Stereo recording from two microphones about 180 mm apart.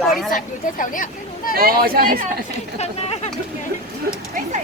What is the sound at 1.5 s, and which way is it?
Speech, 55° right (ahead or behind).